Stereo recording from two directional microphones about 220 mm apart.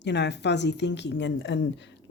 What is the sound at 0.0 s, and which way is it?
Speech, 50° left (ahead or behind).